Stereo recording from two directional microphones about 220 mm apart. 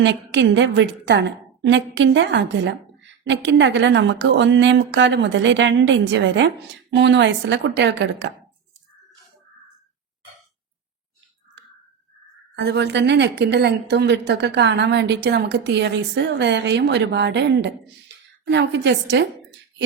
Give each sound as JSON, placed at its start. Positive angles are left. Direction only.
{"t": 0.0, "sound": "a woman's voice", "side_deg": -55}
{"t": 12.5, "sound": "a woman's voice", "side_deg": -50}